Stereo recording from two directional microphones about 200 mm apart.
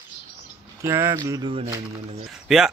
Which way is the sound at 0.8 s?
15° right (ahead or behind).